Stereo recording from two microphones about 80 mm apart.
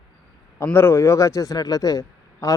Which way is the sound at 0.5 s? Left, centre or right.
Left.